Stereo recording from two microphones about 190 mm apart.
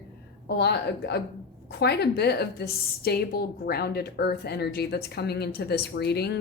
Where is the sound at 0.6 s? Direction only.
60° left (ahead or behind).